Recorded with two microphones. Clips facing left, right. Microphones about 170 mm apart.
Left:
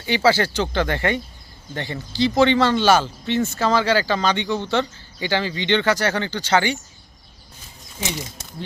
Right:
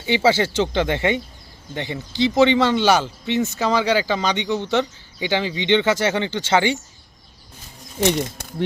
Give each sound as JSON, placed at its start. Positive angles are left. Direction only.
{"t": 0.0, "sound": "speech", "side_deg": -25}
{"t": 8.0, "sound": "speech", "side_deg": -60}